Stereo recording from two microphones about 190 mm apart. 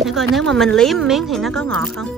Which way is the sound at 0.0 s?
Centre (ahead or behind).